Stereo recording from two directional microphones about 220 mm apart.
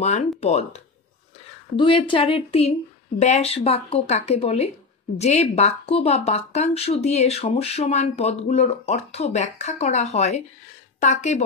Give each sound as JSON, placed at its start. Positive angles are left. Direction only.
{"t": 0.0, "sound": "speech", "side_deg": 30}